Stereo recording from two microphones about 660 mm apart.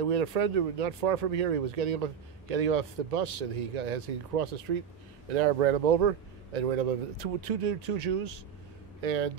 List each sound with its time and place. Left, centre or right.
0.0 s a man's voice: right